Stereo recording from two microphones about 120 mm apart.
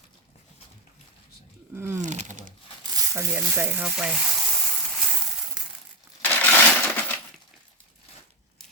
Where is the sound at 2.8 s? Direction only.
35° right (ahead or behind).